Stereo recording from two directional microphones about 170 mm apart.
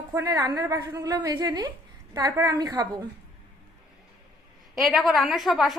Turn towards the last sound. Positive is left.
turn(degrees=0)  # may be behind; listen again after turning